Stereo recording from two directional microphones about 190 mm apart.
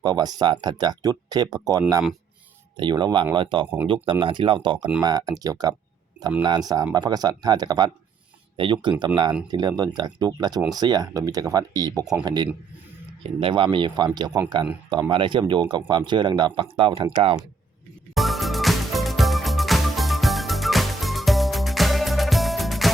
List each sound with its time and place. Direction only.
0.0 s speech: 20° right (ahead or behind)
18.1 s music: centre (ahead or behind)